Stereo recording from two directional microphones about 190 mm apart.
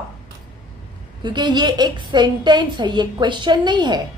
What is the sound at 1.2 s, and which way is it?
A woman's voice, 25° right (ahead or behind).